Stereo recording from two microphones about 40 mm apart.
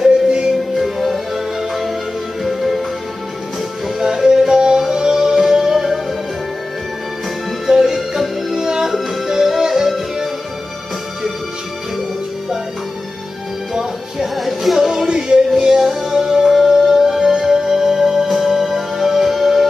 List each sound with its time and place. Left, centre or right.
0.0 s music: centre
0.7 s music: centre
4.0 s music: centre
7.6 s music: centre
13.7 s music: centre
15.0 s music: centre